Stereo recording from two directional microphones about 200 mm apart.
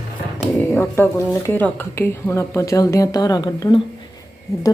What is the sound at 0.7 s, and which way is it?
Speech, 10° left (ahead or behind).